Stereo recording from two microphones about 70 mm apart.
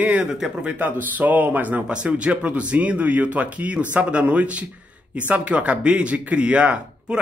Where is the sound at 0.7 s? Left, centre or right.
Right.